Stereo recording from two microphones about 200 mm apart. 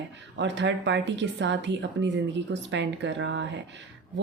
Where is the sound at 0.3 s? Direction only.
65° right (ahead or behind).